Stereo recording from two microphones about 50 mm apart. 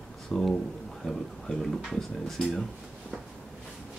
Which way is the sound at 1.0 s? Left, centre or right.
Centre.